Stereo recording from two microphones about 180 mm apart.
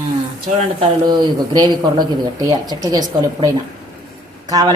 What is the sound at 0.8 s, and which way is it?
Speech, 25° right (ahead or behind).